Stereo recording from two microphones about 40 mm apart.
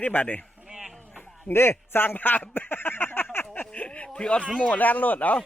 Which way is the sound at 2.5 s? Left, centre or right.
Left.